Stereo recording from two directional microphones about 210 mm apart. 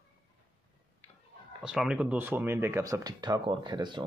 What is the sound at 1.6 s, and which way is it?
Speech, 5° right (ahead or behind).